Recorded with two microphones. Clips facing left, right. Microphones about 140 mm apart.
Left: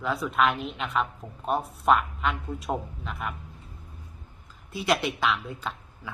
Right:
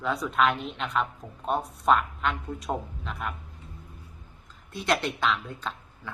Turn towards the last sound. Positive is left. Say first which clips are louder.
# left 1 dB
turn(degrees=5)  # may be behind; listen again after turning